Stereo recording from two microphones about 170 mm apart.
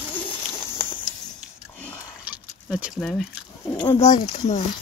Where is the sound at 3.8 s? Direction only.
35° left (ahead or behind).